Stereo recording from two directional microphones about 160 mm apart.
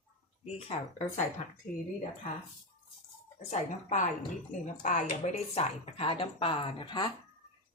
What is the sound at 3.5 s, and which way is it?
Speech, 50° left (ahead or behind).